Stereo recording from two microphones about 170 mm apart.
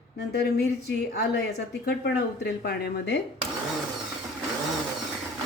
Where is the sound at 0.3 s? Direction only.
75° left (ahead or behind).